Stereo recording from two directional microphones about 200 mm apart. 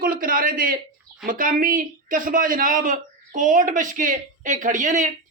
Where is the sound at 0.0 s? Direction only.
45° right (ahead or behind).